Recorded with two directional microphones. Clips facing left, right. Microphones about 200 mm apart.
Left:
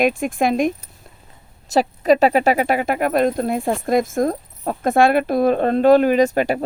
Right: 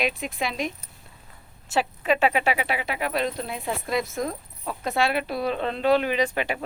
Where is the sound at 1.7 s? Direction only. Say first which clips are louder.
Left 8 dB; 40° left (ahead or behind).